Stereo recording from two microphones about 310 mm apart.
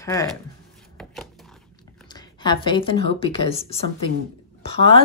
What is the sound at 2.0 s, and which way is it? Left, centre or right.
Speech, centre.